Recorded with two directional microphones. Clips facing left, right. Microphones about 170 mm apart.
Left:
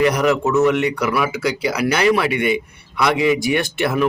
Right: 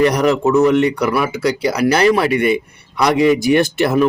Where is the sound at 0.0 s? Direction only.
35° right (ahead or behind).